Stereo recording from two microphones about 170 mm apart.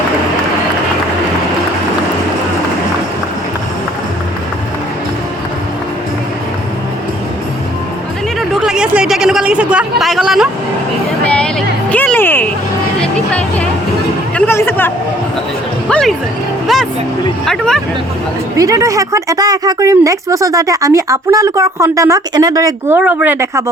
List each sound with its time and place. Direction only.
8.4 s a sound: centre (ahead or behind)
11.3 s music: 5° left (ahead or behind)
13.0 s a sound: 5° left (ahead or behind)
14.3 s chatter: 10° left (ahead or behind)
15.9 s music: 5° left (ahead or behind)
17.4 s speech: 5° left (ahead or behind)
18.5 s speech: 20° right (ahead or behind)